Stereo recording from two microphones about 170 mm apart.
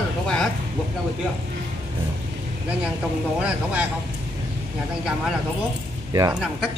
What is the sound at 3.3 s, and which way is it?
Speech, 5° right (ahead or behind).